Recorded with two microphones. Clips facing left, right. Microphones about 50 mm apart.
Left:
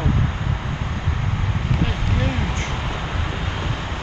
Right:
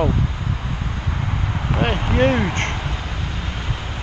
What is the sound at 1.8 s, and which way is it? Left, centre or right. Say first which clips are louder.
Speech: right 10 dB; right.